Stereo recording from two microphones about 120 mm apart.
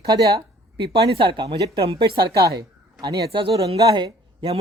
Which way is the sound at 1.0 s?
45° right (ahead or behind).